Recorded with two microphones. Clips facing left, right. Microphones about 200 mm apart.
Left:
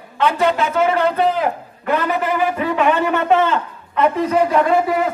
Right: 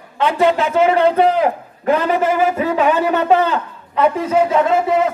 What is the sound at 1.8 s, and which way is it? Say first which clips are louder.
A man's voice: right 4 dB; 45° right (ahead or behind).